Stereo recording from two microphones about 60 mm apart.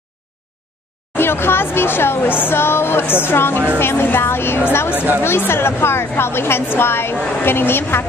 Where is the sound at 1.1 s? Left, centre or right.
Left.